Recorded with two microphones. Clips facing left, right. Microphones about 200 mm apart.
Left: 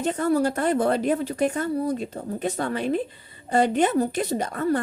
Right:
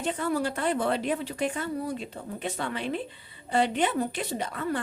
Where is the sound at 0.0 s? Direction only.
45° left (ahead or behind).